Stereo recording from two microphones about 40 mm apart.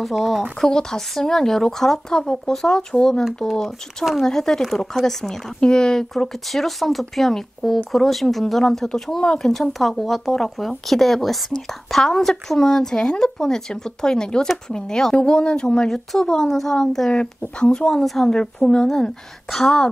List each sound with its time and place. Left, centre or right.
0.0 s speech: centre
0.7 s speech: centre
15.9 s speech: centre
18.0 s speech: centre
18.3 s speech: centre